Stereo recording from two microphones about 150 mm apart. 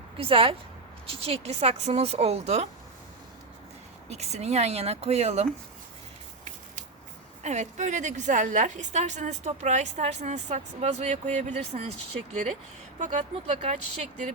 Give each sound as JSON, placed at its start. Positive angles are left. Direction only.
{"t": 0.2, "sound": "a woman's voice", "side_deg": -40}
{"t": 4.1, "sound": "a woman's voice", "side_deg": -45}
{"t": 7.4, "sound": "a woman's voice", "side_deg": -50}
{"t": 13.0, "sound": "a woman's voice", "side_deg": -55}